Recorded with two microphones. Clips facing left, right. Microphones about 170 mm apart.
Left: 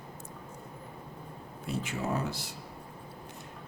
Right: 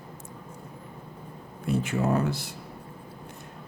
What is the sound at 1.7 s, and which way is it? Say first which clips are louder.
Speech: right 7 dB; 55° right (ahead or behind).